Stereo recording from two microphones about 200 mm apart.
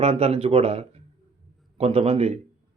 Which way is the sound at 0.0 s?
30° right (ahead or behind).